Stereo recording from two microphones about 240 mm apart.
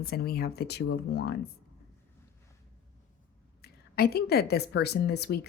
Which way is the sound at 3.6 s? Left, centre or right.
Left.